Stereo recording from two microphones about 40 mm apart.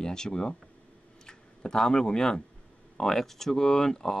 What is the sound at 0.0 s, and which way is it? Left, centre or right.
Speech, centre.